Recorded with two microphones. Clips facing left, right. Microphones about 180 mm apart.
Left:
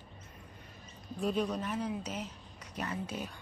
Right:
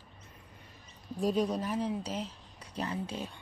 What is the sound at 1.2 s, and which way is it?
Speech, 35° right (ahead or behind).